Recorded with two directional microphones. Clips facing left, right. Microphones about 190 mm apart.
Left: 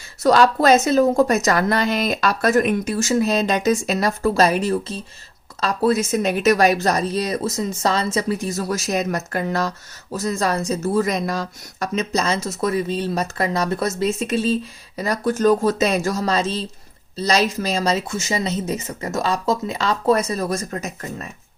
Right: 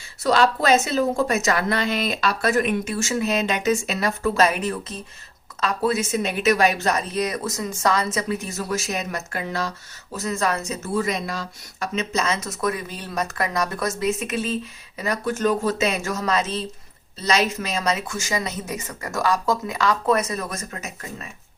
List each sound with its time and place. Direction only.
0.2 s speech: 45° left (ahead or behind)